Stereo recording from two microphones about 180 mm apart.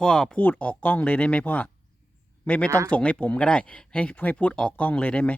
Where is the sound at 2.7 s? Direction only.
15° right (ahead or behind).